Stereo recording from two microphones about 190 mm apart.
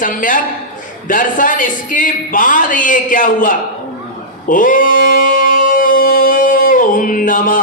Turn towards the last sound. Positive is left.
turn(degrees=45)  # may be behind; listen again after turning